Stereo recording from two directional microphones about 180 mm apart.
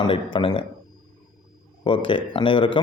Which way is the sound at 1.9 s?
30° left (ahead or behind).